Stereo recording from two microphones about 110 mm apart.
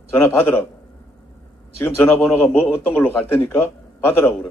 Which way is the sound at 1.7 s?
25° left (ahead or behind).